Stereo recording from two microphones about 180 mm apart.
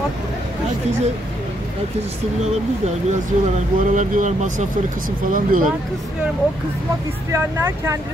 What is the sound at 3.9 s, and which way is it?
Speech, 45° right (ahead or behind).